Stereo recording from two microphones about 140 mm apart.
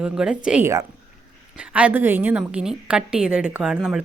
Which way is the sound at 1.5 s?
10° right (ahead or behind).